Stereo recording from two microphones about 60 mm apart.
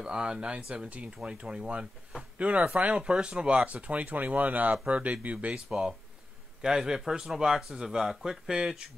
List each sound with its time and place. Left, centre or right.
0.0 s speech: centre